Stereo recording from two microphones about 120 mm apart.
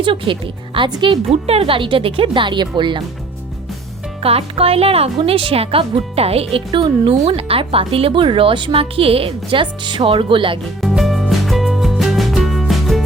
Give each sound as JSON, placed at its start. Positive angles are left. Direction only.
{"t": 0.0, "sound": "speech", "side_deg": -45}
{"t": 1.3, "sound": "speech", "side_deg": -55}
{"t": 4.2, "sound": "speech", "side_deg": -55}
{"t": 6.7, "sound": "speech", "side_deg": -40}
{"t": 7.1, "sound": "speech", "side_deg": -55}
{"t": 10.8, "sound": "music", "side_deg": 0}